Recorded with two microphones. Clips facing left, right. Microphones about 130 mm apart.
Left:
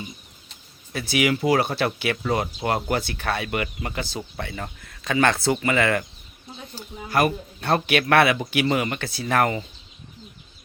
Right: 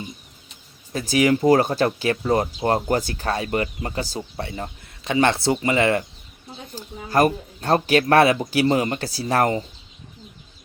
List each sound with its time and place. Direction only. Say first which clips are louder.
0.9 s speech: right 4 dB; 40° right (ahead or behind)
6.7 s speech: right 3 dB; 40° right (ahead or behind)